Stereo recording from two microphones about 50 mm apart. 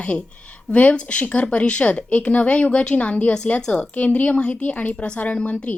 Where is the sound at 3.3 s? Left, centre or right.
Centre.